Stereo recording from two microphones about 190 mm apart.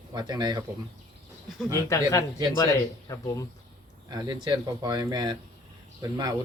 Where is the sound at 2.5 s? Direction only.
20° left (ahead or behind).